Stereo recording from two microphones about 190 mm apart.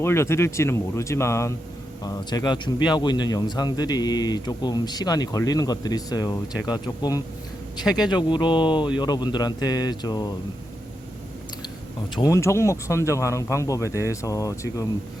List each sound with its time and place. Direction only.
0.0 s a man's voice: 15° left (ahead or behind)
12.1 s speech: 20° left (ahead or behind)